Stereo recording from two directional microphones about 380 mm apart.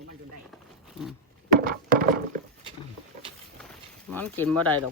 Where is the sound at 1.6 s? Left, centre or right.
Right.